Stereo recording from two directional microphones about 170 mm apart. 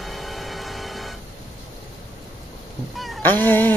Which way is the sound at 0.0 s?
Centre (ahead or behind).